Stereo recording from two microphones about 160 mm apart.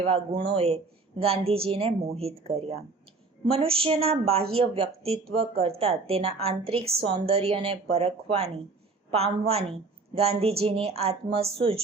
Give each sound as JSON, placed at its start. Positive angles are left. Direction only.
{"t": 0.0, "sound": "speech", "side_deg": -35}